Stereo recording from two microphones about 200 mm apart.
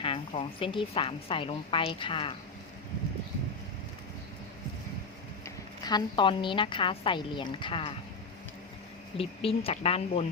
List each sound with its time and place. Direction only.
0.0 s a woman's voice: 25° left (ahead or behind)
5.8 s a woman's voice: 20° left (ahead or behind)
9.1 s a woman's voice: 30° left (ahead or behind)